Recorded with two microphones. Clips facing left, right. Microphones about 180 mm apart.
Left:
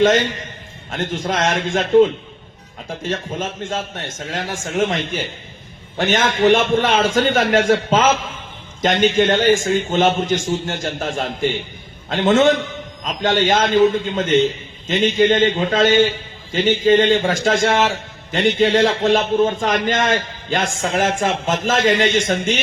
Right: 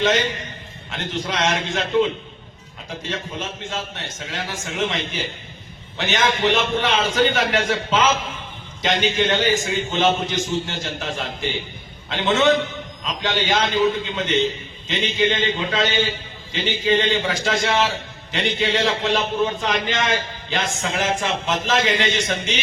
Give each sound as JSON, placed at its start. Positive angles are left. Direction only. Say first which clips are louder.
{"t": 0.9, "sound": "a man's voice", "louder": "left 5 dB", "side_deg": 50}